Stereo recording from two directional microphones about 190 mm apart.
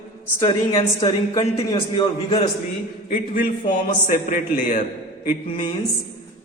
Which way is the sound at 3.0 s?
50° left (ahead or behind).